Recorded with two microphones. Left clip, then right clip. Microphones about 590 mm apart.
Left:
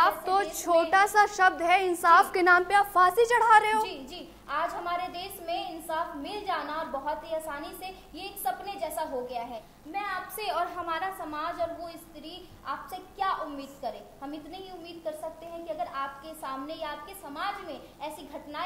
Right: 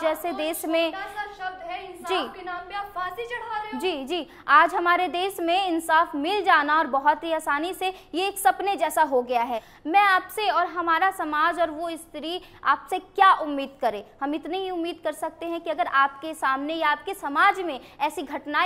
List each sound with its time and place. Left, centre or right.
0.9 s a woman's voice: left
3.7 s a woman's voice: right
10.4 s a woman's voice: right